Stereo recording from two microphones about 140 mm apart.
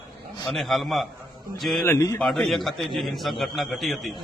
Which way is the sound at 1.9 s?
20° left (ahead or behind).